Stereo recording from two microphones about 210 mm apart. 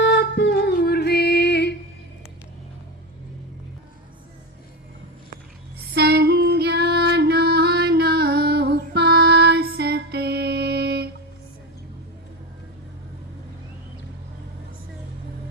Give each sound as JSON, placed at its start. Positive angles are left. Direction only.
{"t": 0.0, "sound": "music", "side_deg": 55}
{"t": 5.9, "sound": "female singing", "side_deg": -50}